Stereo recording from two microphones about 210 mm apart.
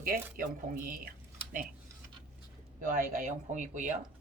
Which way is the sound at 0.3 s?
40° right (ahead or behind).